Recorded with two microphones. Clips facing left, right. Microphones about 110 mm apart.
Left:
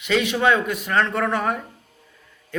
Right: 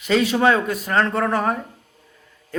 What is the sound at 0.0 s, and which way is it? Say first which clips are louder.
A man's voice: right 3 dB; 35° right (ahead or behind).